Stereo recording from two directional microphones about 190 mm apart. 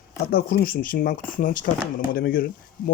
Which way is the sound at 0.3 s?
50° left (ahead or behind).